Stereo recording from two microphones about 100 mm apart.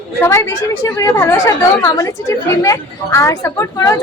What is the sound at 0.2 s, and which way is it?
A woman's voice, 30° left (ahead or behind).